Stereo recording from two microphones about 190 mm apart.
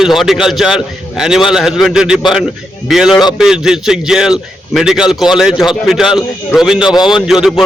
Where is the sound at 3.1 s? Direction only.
20° left (ahead or behind).